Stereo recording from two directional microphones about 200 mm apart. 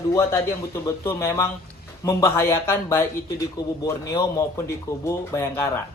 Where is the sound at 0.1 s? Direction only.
15° left (ahead or behind).